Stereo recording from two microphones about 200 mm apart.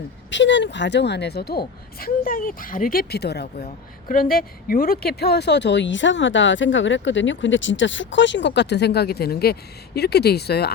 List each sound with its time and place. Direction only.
0.3 s a woman's voice: 65° left (ahead or behind)